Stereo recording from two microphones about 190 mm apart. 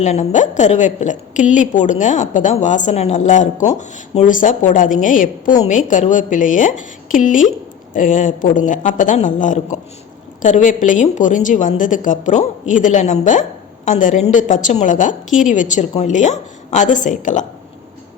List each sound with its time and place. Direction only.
0.0 s a woman's voice: 35° left (ahead or behind)